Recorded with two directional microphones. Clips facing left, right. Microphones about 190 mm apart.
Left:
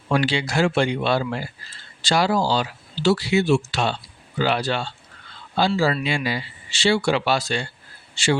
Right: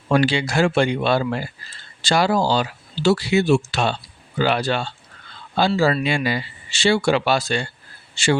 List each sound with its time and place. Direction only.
0.1 s speech: 50° right (ahead or behind)